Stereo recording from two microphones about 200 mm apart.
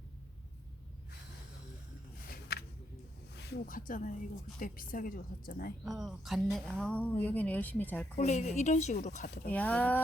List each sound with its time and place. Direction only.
2.2 s a sound: 50° left (ahead or behind)
3.3 s a woman's voice: 55° left (ahead or behind)
5.8 s speech: centre (ahead or behind)
8.2 s a woman's voice: 35° left (ahead or behind)
9.2 s a woman's voice: 50° left (ahead or behind)
9.5 s speech: 5° left (ahead or behind)